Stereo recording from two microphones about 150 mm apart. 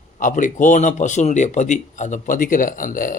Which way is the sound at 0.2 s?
60° left (ahead or behind).